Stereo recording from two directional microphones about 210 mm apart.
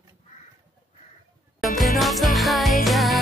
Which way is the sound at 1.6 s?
Centre (ahead or behind).